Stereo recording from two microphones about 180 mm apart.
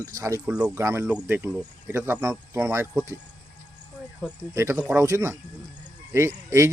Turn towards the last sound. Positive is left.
turn(degrees=-15)  # may be behind; listen again after turning